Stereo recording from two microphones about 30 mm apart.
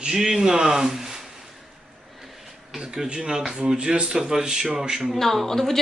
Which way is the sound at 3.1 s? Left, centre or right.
Right.